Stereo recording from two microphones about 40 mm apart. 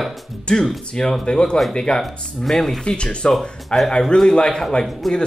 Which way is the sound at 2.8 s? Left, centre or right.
Left.